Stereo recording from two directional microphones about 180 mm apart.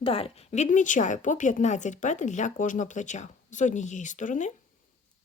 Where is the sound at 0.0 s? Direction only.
30° left (ahead or behind).